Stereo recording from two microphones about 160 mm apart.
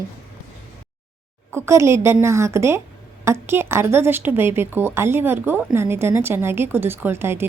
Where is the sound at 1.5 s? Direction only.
15° right (ahead or behind).